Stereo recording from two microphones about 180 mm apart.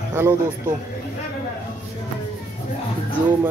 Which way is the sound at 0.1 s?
15° right (ahead or behind).